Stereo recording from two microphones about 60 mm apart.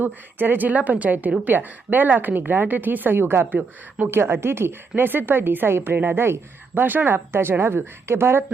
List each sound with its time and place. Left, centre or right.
0.0 s a woman's voice: right